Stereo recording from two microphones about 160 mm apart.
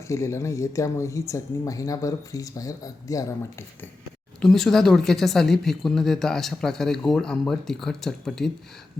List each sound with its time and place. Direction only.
0.1 s speech: 20° left (ahead or behind)
4.4 s a woman's voice: centre (ahead or behind)